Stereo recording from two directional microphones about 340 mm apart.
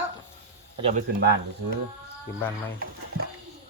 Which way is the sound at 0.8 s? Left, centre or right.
Centre.